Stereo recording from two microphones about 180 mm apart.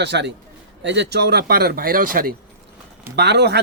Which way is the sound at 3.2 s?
70° right (ahead or behind).